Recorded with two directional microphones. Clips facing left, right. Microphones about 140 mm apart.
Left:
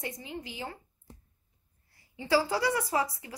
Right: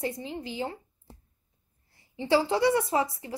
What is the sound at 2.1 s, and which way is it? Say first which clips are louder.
Speech: right 3 dB; 25° right (ahead or behind).